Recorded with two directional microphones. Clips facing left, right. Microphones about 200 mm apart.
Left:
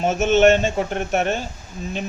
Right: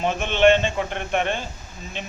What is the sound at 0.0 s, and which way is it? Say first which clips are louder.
Speech: left 3 dB; 40° left (ahead or behind).